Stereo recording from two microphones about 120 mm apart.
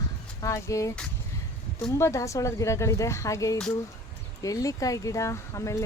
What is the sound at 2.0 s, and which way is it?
Speech, 25° left (ahead or behind).